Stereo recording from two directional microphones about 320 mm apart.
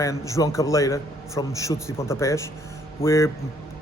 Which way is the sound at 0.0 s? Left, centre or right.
Centre.